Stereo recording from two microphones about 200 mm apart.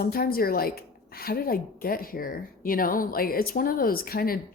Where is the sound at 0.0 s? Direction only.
50° left (ahead or behind).